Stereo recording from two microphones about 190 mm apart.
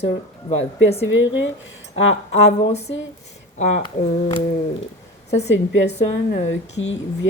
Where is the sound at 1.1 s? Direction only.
70° left (ahead or behind).